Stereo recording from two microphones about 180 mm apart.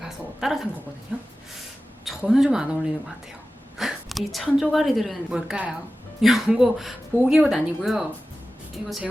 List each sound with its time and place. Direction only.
0.0 s a woman's voice: centre (ahead or behind)